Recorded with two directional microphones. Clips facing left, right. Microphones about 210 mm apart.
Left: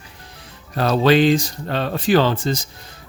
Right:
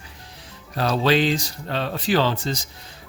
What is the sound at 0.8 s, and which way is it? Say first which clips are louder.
Speech: left 5 dB; 50° left (ahead or behind).